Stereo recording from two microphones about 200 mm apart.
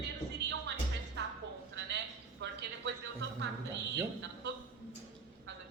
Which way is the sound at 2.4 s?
60° right (ahead or behind).